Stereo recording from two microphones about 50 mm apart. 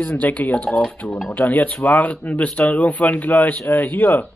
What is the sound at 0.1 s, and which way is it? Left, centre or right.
Speech, left.